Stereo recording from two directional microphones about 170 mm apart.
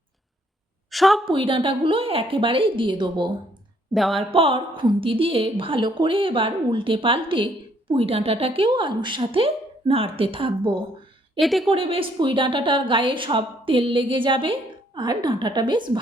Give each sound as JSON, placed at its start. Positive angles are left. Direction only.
{"t": 0.9, "sound": "a sound", "side_deg": 0}
{"t": 1.2, "sound": "a woman's voice", "side_deg": -30}
{"t": 3.9, "sound": "speech", "side_deg": 0}
{"t": 4.3, "sound": "a woman's voice", "side_deg": -30}
{"t": 11.3, "sound": "speech", "side_deg": 0}
{"t": 11.7, "sound": "a woman's voice", "side_deg": -35}